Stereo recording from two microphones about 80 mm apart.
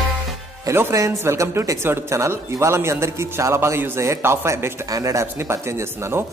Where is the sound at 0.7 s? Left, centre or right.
Right.